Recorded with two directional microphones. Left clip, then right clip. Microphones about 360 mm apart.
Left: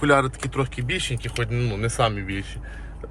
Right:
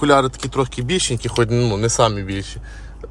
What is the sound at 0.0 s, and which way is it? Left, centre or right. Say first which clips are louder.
Speech: right 4 dB; centre.